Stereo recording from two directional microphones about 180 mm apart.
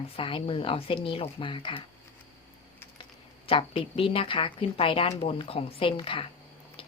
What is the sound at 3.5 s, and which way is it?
A woman's voice, 30° left (ahead or behind).